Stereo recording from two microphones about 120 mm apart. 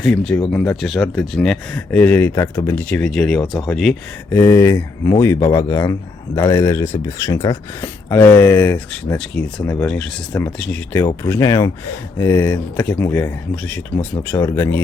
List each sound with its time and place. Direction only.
0.0 s speech: 5° left (ahead or behind)
0.8 s speech: centre (ahead or behind); by 2.8 s 25° left (ahead or behind)
2.9 s speech: 5° left (ahead or behind)
4.3 s a man's voice: 20° left (ahead or behind)
11.2 s a man's voice: 25° left (ahead or behind)
13.6 s a man's voice: 10° left (ahead or behind)